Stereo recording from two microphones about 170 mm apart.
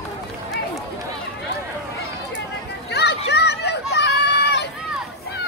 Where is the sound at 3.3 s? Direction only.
80° left.